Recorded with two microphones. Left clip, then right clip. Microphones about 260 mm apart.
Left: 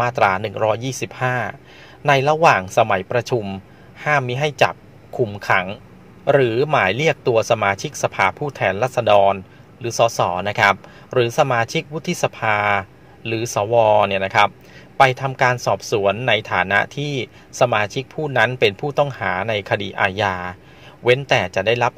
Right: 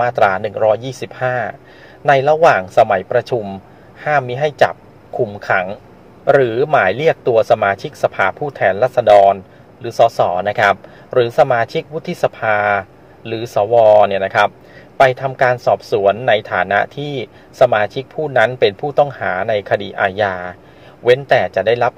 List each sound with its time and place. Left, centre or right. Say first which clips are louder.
0.0 s speech: right 3 dB; left